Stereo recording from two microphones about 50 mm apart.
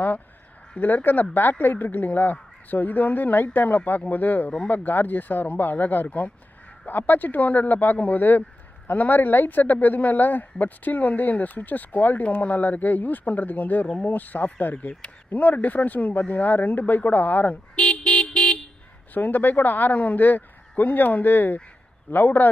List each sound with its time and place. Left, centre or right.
0.7 s speech: left